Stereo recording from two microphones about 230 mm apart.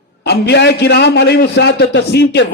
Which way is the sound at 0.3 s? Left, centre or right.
Left.